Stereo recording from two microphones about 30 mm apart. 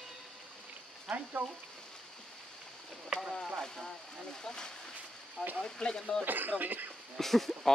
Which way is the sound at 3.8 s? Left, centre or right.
Centre.